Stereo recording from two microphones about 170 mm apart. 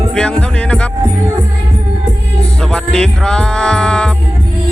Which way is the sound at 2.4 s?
5° left (ahead or behind).